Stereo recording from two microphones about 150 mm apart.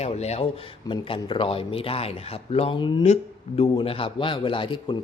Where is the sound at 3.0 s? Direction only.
45° left (ahead or behind).